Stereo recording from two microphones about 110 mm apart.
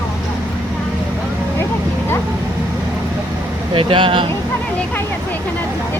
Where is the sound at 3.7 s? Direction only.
50° right (ahead or behind).